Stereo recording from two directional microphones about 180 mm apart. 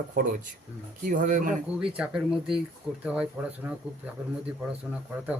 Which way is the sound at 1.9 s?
5° right (ahead or behind).